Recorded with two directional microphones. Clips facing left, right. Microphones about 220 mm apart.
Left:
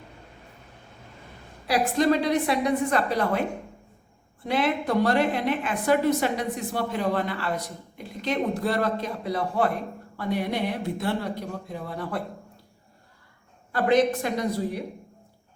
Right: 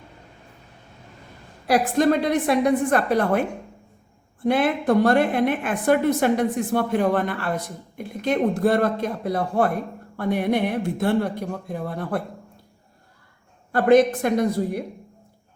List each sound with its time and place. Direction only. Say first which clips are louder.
1.6 s a woman's voice: right 3 dB; 50° right (ahead or behind)
4.4 s a woman's voice: right 5 dB; 50° right (ahead or behind)
13.7 s a woman's voice: right 5 dB; 50° right (ahead or behind)